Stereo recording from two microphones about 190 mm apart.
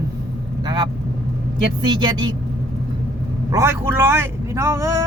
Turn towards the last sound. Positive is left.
turn(degrees=-15)  # may be behind; listen again after turning